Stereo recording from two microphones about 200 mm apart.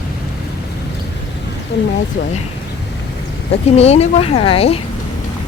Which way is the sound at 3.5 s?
30° left (ahead or behind).